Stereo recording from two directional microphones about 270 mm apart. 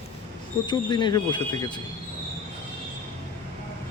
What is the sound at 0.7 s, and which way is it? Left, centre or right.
Speech, centre.